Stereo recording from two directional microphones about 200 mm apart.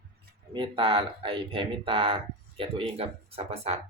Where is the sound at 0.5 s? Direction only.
25° right (ahead or behind).